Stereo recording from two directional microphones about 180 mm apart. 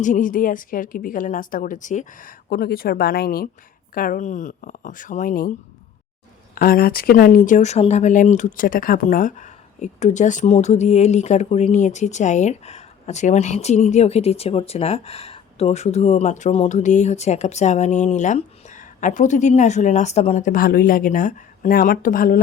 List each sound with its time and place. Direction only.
0.0 s a woman's voice: 45° left (ahead or behind)
6.5 s speech: 55° left (ahead or behind)